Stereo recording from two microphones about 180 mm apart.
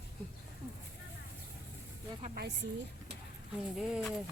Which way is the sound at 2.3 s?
65° right (ahead or behind).